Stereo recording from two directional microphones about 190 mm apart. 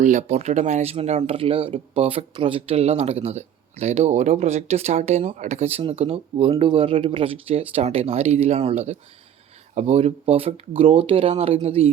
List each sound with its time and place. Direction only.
0.0 s speech: 40° right (ahead or behind)